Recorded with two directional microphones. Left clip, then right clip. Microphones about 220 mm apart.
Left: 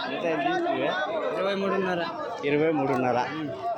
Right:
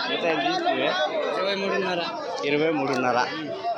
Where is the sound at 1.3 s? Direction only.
45° left (ahead or behind).